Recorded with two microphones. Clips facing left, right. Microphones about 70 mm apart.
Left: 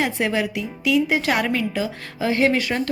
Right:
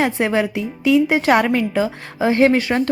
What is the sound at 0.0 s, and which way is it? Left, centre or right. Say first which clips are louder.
A woman's voice: right 4 dB; right.